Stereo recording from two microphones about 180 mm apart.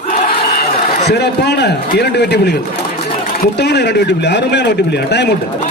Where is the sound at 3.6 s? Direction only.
70° left (ahead or behind).